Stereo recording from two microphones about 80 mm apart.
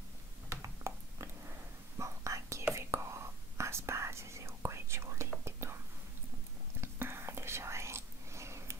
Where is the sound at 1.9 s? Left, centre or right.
Right.